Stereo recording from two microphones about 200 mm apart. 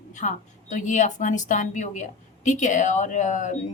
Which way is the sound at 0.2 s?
40° left (ahead or behind).